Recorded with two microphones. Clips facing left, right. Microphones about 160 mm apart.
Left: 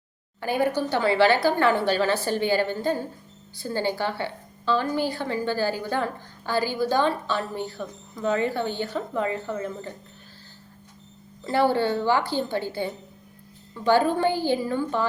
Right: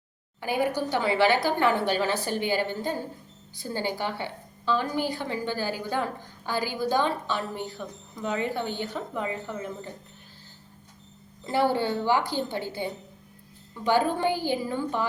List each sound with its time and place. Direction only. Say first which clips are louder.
0.4 s a woman's voice: left 3 dB; 15° right (ahead or behind)
11.4 s a woman's voice: left 3 dB; 15° right (ahead or behind)